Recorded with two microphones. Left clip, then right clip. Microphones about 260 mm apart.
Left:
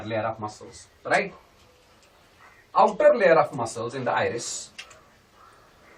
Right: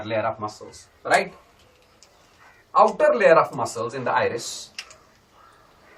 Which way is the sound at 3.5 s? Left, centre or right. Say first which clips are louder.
Right 3 dB; centre.